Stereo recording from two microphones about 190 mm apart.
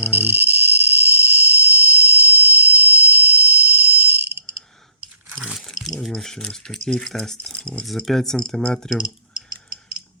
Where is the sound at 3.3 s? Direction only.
10° right (ahead or behind).